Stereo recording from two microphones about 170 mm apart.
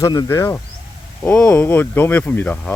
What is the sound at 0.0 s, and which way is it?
Speech, 20° left (ahead or behind).